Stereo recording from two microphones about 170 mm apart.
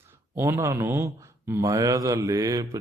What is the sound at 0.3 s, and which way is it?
A man's voice, 15° right (ahead or behind).